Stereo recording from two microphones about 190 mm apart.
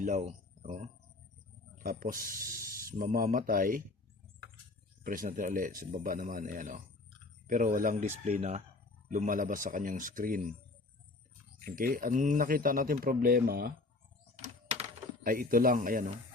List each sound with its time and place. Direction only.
0.0 s speech: 40° right (ahead or behind)
1.8 s speech: 45° right (ahead or behind)
5.0 s speech: 45° right (ahead or behind)
11.6 s speech: 45° right (ahead or behind)
14.3 s typewriter: 35° right (ahead or behind)